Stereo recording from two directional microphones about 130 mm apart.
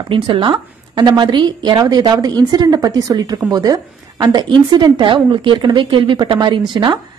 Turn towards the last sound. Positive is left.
turn(degrees=-35)  # may be behind; listen again after turning